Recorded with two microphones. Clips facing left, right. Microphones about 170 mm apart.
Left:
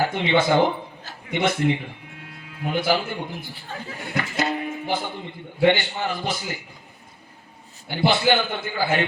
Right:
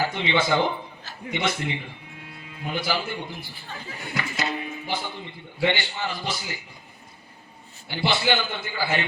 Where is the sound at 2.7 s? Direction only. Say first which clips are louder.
Left 5 dB; 50° left (ahead or behind).